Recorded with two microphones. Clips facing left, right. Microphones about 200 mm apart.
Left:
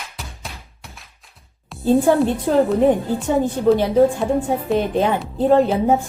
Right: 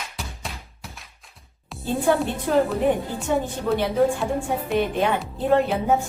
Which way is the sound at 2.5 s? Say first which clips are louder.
Left 3 dB; 35° left (ahead or behind).